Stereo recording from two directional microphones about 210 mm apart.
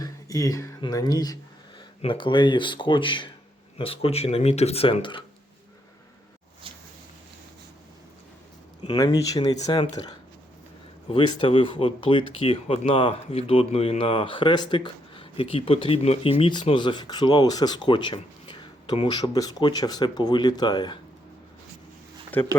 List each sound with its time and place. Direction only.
0.0 s speech: 15° left (ahead or behind)
8.8 s speech: 20° left (ahead or behind)
22.3 s speech: 10° left (ahead or behind)